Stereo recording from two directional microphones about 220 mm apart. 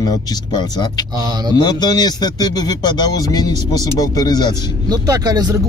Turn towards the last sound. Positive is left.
turn(degrees=-15)  # may be behind; listen again after turning